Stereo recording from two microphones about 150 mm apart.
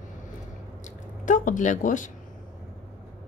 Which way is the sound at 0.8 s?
60° left (ahead or behind).